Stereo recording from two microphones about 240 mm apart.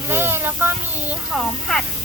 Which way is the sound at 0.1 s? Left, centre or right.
Centre.